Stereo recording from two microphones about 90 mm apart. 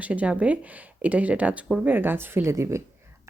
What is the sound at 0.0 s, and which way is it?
Speech, 15° right (ahead or behind).